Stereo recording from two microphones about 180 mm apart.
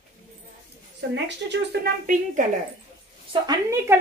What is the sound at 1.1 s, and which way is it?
Speech, 75° right (ahead or behind).